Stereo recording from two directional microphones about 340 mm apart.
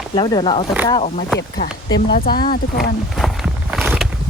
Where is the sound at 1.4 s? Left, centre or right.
Left.